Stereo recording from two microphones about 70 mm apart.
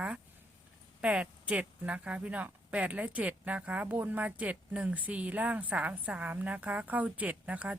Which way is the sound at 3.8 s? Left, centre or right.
Right.